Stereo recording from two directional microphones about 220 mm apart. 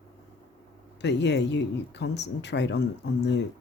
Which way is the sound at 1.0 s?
50° left (ahead or behind).